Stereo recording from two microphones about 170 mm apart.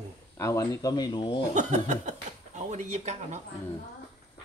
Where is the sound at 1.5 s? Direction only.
45° right (ahead or behind).